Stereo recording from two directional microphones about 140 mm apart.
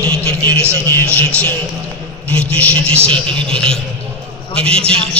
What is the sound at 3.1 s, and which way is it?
A man's voice, 5° left (ahead or behind).